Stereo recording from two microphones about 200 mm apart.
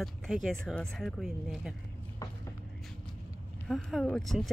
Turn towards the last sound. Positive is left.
turn(degrees=0)  # may be behind; listen again after turning